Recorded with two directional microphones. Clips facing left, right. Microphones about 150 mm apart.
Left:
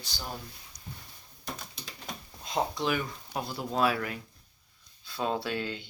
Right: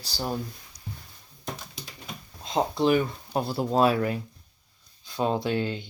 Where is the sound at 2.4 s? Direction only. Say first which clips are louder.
Right 6 dB; 30° right (ahead or behind).